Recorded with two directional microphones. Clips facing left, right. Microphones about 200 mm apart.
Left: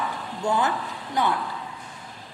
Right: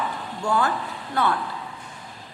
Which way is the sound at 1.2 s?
15° left (ahead or behind).